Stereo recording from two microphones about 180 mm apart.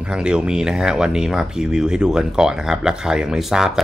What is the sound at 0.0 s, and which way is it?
Speech, 5° right (ahead or behind).